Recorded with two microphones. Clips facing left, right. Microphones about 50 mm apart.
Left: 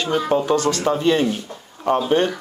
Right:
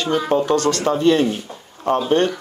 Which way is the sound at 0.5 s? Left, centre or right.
Centre.